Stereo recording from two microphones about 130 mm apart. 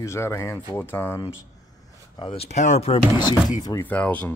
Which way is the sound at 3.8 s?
10° left (ahead or behind).